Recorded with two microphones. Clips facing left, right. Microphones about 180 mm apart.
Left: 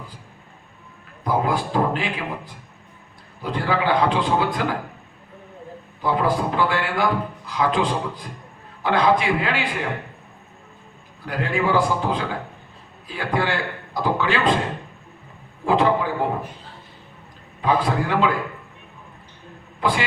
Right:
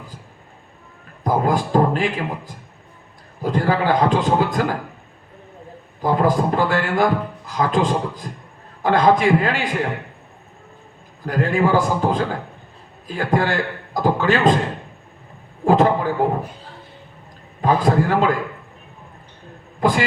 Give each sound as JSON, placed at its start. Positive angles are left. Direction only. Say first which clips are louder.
{"t": 1.2, "sound": "a man's voice", "louder": "right 3 dB", "side_deg": -45}
{"t": 6.0, "sound": "a man's voice", "louder": "right 3 dB", "side_deg": -45}
{"t": 11.3, "sound": "a man's voice", "louder": "right 4 dB", "side_deg": -45}
{"t": 15.6, "sound": "a man's voice", "louder": "right 3 dB", "side_deg": -45}
{"t": 17.6, "sound": "a man's voice", "louder": "right 4 dB", "side_deg": -45}
{"t": 19.8, "sound": "speech", "louder": "right 4 dB", "side_deg": -45}